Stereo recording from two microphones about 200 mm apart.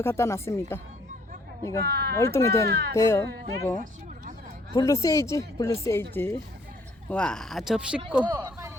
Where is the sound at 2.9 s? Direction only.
15° left (ahead or behind).